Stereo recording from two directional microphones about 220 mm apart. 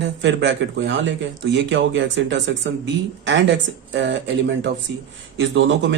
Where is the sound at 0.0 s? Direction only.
55° right (ahead or behind).